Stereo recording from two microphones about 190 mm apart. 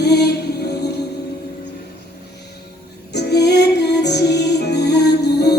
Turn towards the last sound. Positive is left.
turn(degrees=60)  # may be behind; listen again after turning